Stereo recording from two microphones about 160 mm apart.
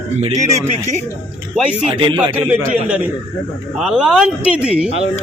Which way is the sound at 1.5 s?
5° right (ahead or behind).